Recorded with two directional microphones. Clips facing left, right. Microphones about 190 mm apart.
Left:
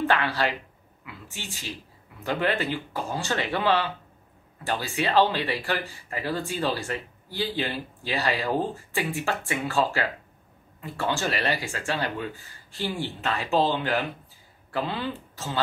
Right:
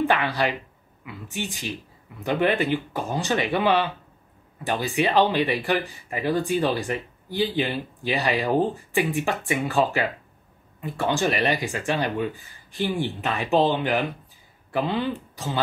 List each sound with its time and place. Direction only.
0.0 s speech: 15° right (ahead or behind)